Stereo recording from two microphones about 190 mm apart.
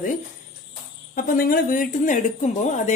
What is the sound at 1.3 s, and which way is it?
Speech, 50° left (ahead or behind).